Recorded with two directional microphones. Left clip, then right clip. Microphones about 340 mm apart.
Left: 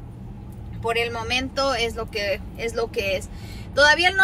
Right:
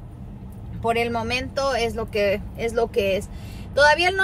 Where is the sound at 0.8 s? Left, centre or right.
Centre.